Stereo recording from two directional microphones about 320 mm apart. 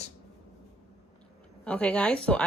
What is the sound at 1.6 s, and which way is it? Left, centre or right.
Speech, centre.